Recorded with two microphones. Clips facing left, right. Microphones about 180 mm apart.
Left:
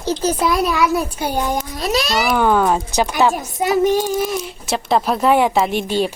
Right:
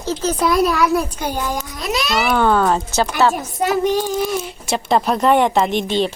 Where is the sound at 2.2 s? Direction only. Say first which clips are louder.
Right 1 dB; 10° left (ahead or behind).